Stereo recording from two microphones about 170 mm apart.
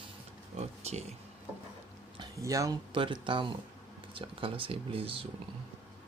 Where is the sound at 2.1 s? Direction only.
20° right (ahead or behind).